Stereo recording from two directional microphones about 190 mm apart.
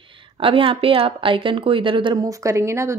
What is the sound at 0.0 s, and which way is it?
Speech, 25° right (ahead or behind).